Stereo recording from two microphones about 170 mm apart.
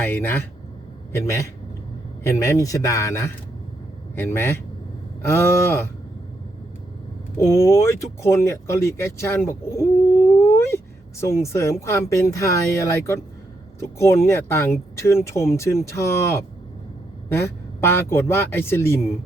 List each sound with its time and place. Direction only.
0.0 s speech: 10° left (ahead or behind)
7.3 s speech: 15° left (ahead or behind)
17.7 s speech: 15° left (ahead or behind)